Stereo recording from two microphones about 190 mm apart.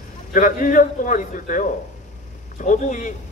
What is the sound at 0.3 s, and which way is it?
A man's voice, 45° left (ahead or behind).